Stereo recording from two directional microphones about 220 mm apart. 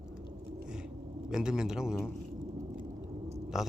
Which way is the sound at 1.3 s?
5° right (ahead or behind).